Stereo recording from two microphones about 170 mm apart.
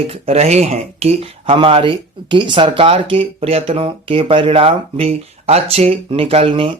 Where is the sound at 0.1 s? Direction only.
40° right (ahead or behind).